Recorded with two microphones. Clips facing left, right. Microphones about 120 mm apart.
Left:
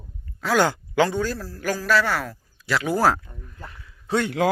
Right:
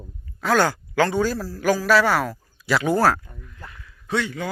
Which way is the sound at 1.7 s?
10° right (ahead or behind).